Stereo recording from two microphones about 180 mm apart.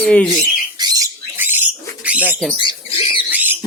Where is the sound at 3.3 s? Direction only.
10° right (ahead or behind).